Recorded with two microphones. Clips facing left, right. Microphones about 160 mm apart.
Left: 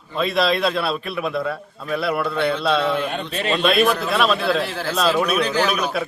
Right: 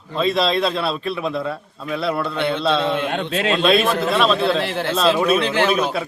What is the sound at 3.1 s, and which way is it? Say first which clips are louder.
Speech: right 4 dB; 75° right (ahead or behind).